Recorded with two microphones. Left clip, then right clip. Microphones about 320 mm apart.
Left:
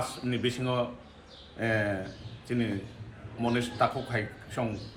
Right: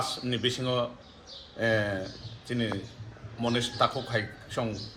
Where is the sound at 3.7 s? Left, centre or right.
Right.